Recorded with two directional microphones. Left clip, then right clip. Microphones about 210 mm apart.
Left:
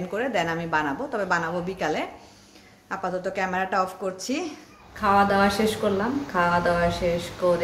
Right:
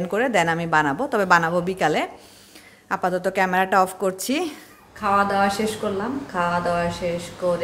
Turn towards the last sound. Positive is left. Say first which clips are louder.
# left 1 dB
turn(degrees=-5)  # may be behind; listen again after turning